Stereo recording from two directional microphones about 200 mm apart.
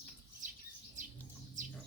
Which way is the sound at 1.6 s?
40° right (ahead or behind).